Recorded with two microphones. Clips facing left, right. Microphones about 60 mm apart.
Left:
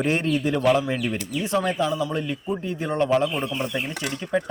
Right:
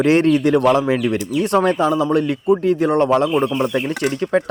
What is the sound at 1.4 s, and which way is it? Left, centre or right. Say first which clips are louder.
A man's voice: right 7 dB; right.